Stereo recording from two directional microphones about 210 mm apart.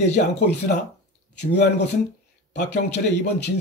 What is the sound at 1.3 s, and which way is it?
Speech, 55° left (ahead or behind).